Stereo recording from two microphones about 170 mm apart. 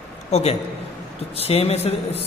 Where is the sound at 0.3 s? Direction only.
40° left (ahead or behind).